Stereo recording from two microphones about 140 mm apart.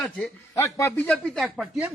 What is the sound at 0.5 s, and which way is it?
Speech, 20° left (ahead or behind).